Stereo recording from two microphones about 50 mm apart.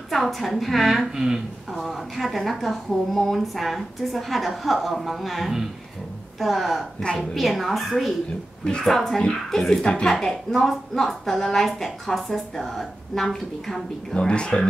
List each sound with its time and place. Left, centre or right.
0.1 s a woman's voice: centre
14.1 s a woman's voice: centre